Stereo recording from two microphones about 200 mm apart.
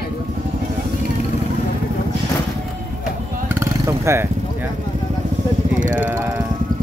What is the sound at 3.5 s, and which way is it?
Vehicle, 15° right (ahead or behind).